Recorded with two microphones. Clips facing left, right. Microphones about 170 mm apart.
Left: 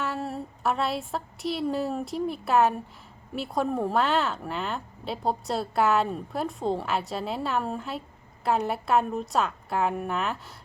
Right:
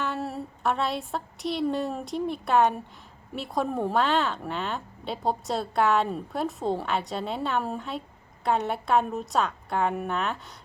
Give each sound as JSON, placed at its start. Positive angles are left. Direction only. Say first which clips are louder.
{"t": 0.0, "sound": "a woman's voice", "louder": "even", "side_deg": 0}